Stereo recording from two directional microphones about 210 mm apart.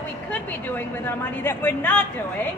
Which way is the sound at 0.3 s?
10° left (ahead or behind).